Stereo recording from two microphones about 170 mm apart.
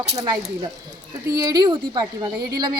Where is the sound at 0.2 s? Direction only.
25° right (ahead or behind).